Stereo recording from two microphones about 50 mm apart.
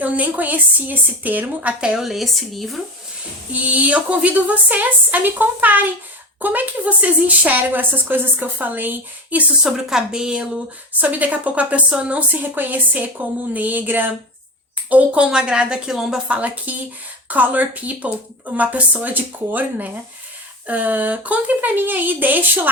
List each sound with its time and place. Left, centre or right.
0.0 s speech: right
2.0 s speech: centre
3.5 s speech: right
9.6 s a woman's voice: centre
11.0 s speech: right
15.2 s a woman's voice: centre
15.9 s a woman's voice: centre
16.3 s speech: right